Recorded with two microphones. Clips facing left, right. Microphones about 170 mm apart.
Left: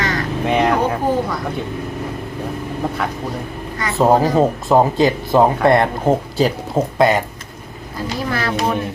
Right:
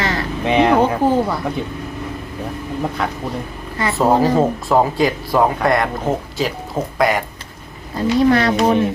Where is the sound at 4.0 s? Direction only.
15° left (ahead or behind).